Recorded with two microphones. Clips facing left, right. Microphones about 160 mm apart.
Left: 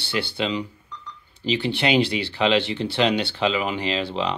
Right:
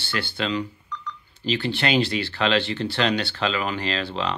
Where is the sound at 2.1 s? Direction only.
15° left (ahead or behind).